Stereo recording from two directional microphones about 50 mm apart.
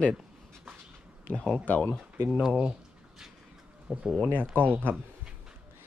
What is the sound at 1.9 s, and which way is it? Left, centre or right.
Speech, centre.